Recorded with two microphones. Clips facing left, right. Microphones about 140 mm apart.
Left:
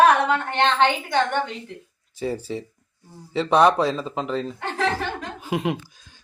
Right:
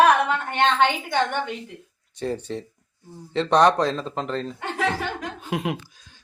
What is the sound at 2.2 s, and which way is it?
Speech, 5° left (ahead or behind).